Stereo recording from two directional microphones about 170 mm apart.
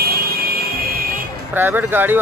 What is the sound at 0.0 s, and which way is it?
Vehicle, 65° right (ahead or behind).